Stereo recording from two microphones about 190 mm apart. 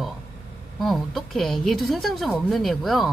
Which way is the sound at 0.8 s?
Centre (ahead or behind).